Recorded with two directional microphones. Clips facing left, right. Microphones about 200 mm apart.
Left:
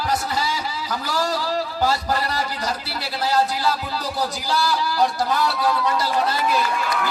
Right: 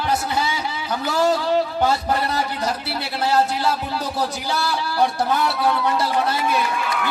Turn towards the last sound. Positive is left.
turn(degrees=-25)  # may be behind; listen again after turning